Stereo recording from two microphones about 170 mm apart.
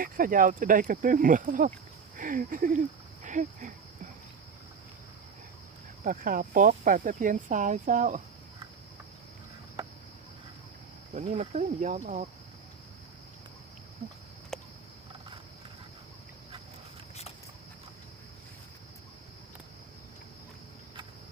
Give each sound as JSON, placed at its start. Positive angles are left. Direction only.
{"t": 0.0, "sound": "speech", "side_deg": -55}
{"t": 6.1, "sound": "speech", "side_deg": -55}
{"t": 11.1, "sound": "speech", "side_deg": -40}
{"t": 14.5, "sound": "cricket", "side_deg": 5}